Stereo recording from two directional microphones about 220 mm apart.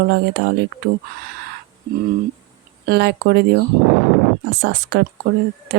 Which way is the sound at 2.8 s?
45° right (ahead or behind).